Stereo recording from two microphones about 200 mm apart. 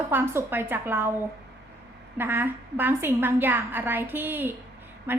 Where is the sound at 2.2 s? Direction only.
10° right (ahead or behind).